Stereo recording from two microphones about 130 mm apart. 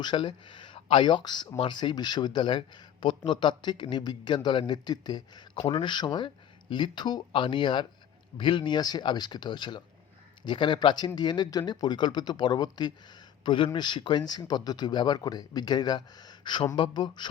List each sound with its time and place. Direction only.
0.0 s speech: 40° left (ahead or behind)